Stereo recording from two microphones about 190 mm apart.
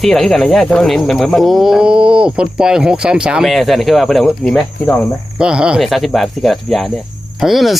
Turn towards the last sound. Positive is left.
turn(degrees=0)  # may be behind; listen again after turning